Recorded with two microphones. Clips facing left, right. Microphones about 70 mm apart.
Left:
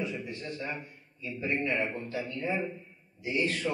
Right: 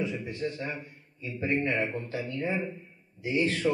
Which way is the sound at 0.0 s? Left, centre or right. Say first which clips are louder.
Right 4 dB; right.